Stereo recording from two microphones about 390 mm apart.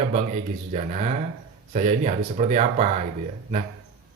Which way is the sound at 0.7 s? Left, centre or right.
Centre.